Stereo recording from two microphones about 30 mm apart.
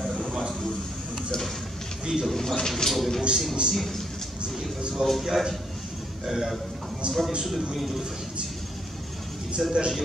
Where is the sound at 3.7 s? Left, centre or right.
Centre.